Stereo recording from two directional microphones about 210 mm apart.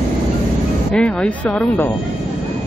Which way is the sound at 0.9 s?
5° left (ahead or behind).